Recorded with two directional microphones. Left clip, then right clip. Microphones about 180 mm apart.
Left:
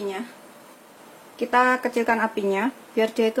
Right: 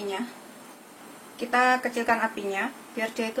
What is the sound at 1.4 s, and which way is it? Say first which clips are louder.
Speech: left 3 dB; 50° left (ahead or behind).